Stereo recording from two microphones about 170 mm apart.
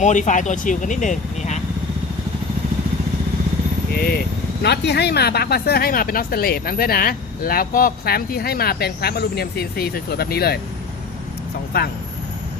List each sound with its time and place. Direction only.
0.0 s speech: 45° left (ahead or behind)
4.6 s a woman's voice: 80° left
11.7 s a woman's voice: 65° left (ahead or behind)